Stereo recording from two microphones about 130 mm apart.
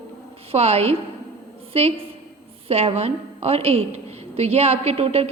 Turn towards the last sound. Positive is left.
turn(degrees=-50)  # may be behind; listen again after turning